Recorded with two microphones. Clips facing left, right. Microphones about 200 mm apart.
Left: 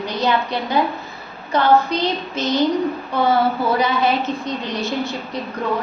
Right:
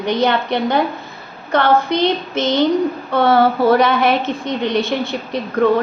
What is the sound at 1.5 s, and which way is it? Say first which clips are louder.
Speech: right 2 dB; 65° right (ahead or behind).